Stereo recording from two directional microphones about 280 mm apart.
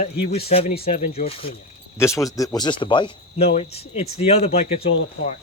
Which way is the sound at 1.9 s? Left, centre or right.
Centre.